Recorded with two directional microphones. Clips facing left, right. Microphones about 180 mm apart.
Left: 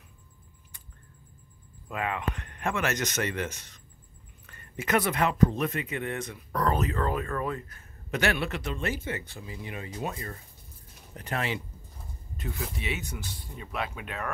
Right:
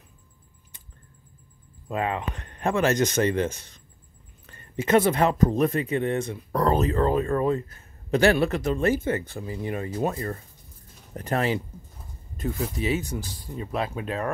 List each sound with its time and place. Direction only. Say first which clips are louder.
1.9 s speech: right 4 dB; 30° right (ahead or behind)